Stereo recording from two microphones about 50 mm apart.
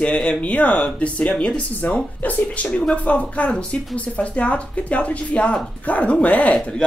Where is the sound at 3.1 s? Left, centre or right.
Left.